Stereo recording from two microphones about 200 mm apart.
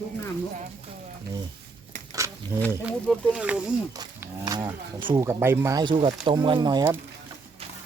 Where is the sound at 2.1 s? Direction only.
15° right (ahead or behind).